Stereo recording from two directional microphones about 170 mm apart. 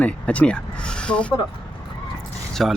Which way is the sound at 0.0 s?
5° left (ahead or behind).